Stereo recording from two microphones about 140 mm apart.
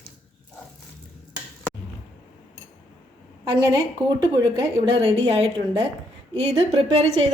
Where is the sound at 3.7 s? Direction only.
30° right (ahead or behind); by 7.3 s 50° right (ahead or behind).